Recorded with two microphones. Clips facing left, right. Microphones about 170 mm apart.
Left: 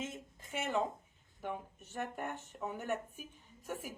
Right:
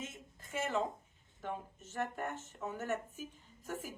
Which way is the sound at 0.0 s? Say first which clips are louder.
Left 4 dB; 20° left (ahead or behind).